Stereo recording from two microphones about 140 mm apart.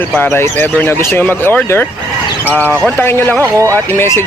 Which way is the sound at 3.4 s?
20° right (ahead or behind).